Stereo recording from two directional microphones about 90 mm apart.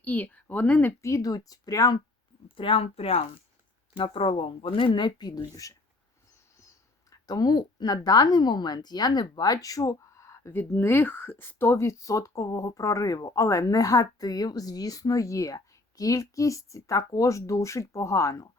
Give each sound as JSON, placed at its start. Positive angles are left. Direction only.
{"t": 0.0, "sound": "speech", "side_deg": 20}
{"t": 1.0, "sound": "speech", "side_deg": 35}
{"t": 2.6, "sound": "speech", "side_deg": 80}
{"t": 5.4, "sound": "a woman's voice", "side_deg": 40}
{"t": 7.1, "sound": "a woman's voice", "side_deg": 45}